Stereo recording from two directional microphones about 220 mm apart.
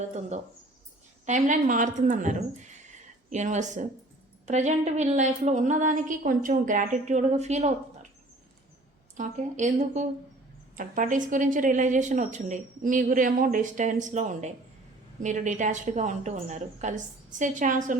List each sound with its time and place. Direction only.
1.2 s speech: 35° right (ahead or behind)
9.1 s speech: 35° right (ahead or behind)